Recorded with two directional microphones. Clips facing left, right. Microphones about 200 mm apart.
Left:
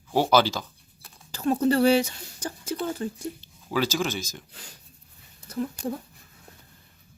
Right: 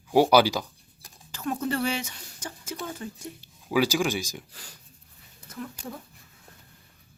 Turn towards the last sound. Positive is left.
turn(degrees=35)  # may be behind; listen again after turning